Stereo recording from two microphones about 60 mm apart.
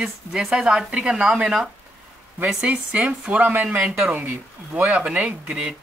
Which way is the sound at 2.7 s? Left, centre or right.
Right.